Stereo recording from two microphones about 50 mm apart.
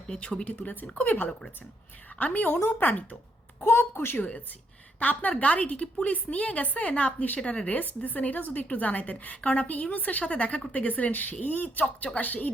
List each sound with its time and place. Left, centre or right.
0.2 s a woman's voice: left
3.6 s a woman's voice: left
4.2 s a woman's voice: left